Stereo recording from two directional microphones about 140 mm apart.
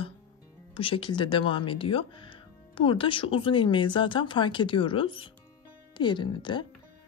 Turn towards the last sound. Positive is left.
turn(degrees=35)  # may be behind; listen again after turning